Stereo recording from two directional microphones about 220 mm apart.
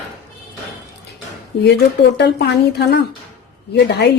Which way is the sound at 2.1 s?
50° left (ahead or behind).